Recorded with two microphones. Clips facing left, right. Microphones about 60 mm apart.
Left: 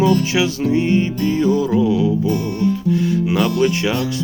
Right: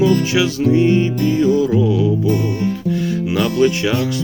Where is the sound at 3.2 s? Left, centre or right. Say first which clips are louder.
Right 5 dB; left.